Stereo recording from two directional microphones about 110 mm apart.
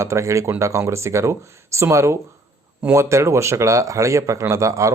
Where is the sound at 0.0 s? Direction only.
25° right (ahead or behind).